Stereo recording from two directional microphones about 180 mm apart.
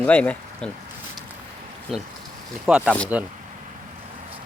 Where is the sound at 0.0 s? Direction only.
10° left (ahead or behind).